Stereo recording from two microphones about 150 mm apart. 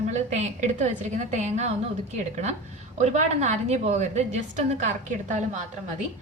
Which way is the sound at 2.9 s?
50° right (ahead or behind).